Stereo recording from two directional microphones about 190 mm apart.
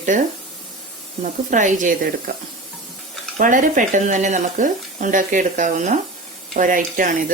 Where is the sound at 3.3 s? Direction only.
45° right (ahead or behind).